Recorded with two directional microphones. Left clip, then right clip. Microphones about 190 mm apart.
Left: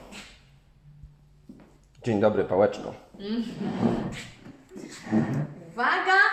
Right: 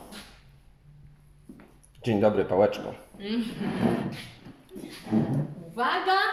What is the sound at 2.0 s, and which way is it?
Speech, 10° right (ahead or behind).